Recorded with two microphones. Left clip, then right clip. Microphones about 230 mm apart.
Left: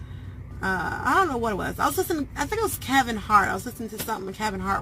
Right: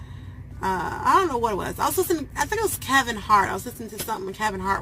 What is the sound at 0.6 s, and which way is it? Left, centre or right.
Speech, centre.